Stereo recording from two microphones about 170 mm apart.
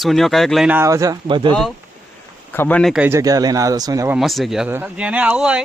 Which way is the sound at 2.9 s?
10° right (ahead or behind).